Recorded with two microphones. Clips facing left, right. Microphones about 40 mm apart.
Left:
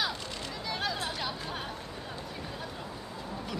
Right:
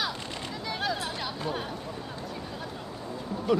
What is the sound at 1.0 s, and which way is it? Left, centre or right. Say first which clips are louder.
Speech: right 2 dB; centre.